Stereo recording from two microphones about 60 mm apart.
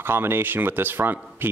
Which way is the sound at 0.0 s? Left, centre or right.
Right.